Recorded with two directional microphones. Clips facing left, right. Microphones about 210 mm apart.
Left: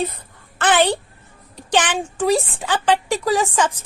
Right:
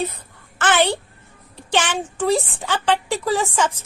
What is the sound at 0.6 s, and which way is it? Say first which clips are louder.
Speech: left 2 dB; 15° left (ahead or behind).